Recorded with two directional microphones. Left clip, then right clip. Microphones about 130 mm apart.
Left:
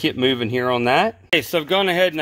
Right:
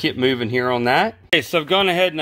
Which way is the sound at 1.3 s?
5° right (ahead or behind).